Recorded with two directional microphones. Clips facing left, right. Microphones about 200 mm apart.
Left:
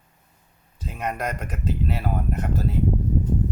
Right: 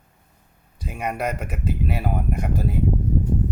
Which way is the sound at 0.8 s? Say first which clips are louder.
Right 2 dB; 10° right (ahead or behind).